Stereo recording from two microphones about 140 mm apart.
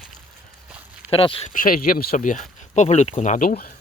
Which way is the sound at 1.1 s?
40° left (ahead or behind).